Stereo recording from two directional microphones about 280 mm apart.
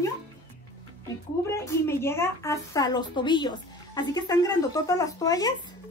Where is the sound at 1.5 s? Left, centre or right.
Centre.